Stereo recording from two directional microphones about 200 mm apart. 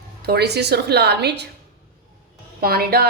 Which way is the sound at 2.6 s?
50° right (ahead or behind).